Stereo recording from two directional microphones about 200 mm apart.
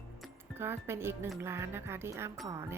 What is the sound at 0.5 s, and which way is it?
Speech, 10° right (ahead or behind).